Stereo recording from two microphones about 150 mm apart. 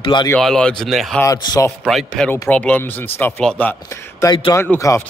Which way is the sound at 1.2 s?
20° left (ahead or behind).